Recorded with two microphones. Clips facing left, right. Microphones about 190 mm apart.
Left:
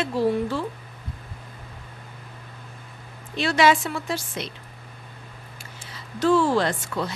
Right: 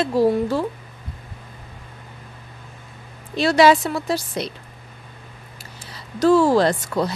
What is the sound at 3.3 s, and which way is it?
A woman's voice, 35° right (ahead or behind).